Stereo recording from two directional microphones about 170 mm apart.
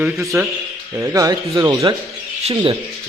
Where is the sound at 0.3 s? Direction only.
10° right (ahead or behind); by 2.7 s 35° right (ahead or behind).